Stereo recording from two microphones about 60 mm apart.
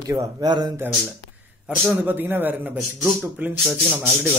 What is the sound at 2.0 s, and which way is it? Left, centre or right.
A man's voice, right.